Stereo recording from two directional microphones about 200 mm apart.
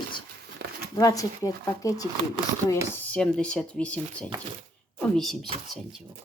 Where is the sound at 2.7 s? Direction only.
5° left (ahead or behind).